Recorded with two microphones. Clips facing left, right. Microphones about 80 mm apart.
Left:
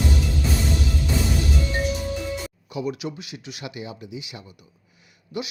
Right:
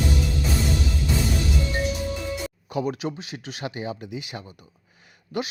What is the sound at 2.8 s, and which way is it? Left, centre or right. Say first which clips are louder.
Speech: right 2 dB; right.